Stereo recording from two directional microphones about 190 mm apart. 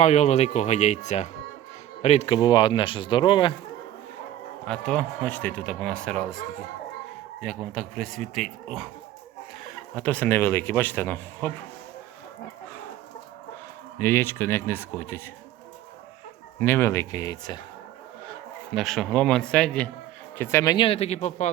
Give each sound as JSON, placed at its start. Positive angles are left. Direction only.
{"t": 0.0, "sound": "speech", "side_deg": 35}
{"t": 4.6, "sound": "speech", "side_deg": 5}
{"t": 7.4, "sound": "speech", "side_deg": 5}
{"t": 14.0, "sound": "speech", "side_deg": 10}
{"t": 16.6, "sound": "speech", "side_deg": 10}
{"t": 18.7, "sound": "speech", "side_deg": 0}